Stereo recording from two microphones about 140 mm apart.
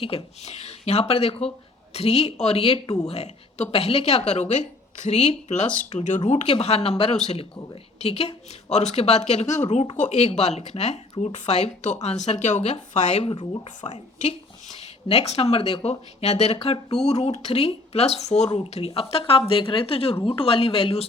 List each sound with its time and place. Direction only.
0.0 s speech: 45° left (ahead or behind)
13.8 s speech: 50° left (ahead or behind)